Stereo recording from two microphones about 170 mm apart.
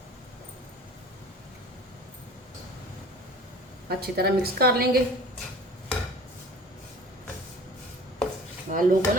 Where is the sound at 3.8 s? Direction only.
65° right (ahead or behind).